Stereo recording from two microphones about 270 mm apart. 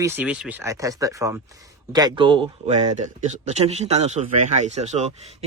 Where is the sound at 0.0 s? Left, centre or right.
Centre.